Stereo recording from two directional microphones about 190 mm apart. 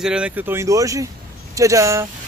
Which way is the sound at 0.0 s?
5° right (ahead or behind).